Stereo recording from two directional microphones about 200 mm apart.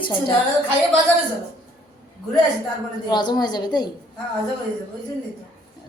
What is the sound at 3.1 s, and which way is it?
Speech, 20° left (ahead or behind).